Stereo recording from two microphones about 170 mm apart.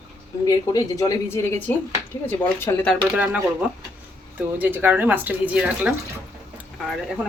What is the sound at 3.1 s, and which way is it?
Speech, 10° right (ahead or behind).